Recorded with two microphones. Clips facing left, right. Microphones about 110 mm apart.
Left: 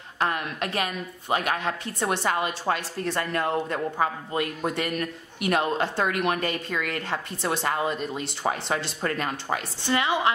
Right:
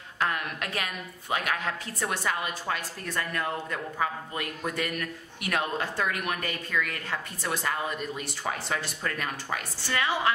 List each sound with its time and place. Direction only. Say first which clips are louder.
0.2 s speech: left 3 dB; 25° left (ahead or behind)